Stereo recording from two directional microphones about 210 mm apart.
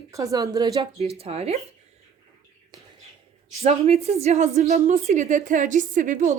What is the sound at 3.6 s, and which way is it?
Speech, 30° right (ahead or behind).